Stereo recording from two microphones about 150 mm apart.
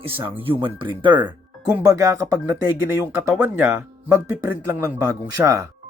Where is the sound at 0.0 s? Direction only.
35° right (ahead or behind).